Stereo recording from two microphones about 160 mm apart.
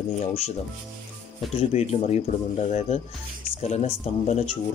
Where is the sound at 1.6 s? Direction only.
40° left (ahead or behind).